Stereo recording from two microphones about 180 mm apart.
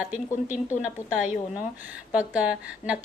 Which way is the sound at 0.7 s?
45° left (ahead or behind).